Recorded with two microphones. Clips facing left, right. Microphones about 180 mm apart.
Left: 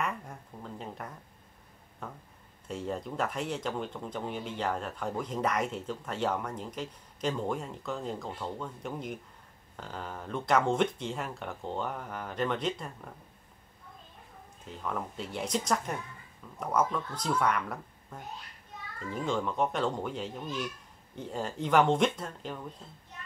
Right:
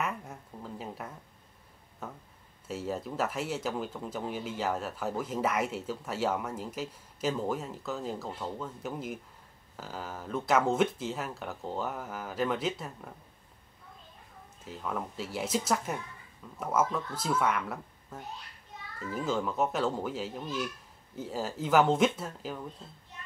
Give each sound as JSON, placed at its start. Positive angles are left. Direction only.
{"t": 0.0, "sound": "a sound", "side_deg": -5}
{"t": 2.0, "sound": "speech", "side_deg": -5}
{"t": 14.7, "sound": "speech", "side_deg": -5}